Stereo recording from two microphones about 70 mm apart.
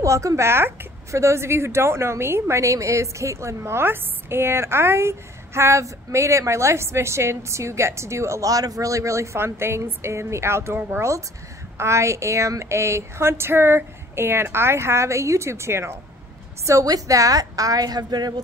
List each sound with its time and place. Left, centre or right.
0.0 s a woman's voice: right
16.6 s a woman's voice: right